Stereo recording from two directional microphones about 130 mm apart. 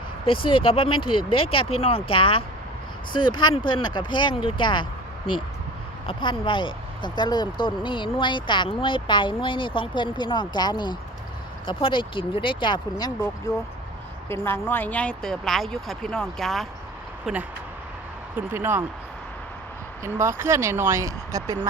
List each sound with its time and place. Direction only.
0.3 s speech: 45° left (ahead or behind)
14.3 s speech: 20° left (ahead or behind); by 17.4 s 5° right (ahead or behind)
18.3 s speech: 20° right (ahead or behind)
20.1 s speech: 20° right (ahead or behind)